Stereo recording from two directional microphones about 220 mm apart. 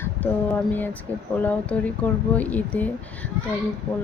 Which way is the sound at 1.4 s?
5° left (ahead or behind).